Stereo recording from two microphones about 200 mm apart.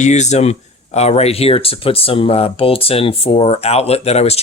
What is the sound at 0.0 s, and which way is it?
Speech, 35° left (ahead or behind).